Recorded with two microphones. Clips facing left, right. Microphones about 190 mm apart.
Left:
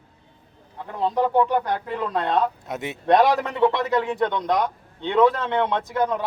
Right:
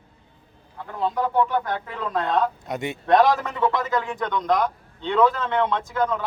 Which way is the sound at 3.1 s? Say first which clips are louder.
Even; 20° left (ahead or behind).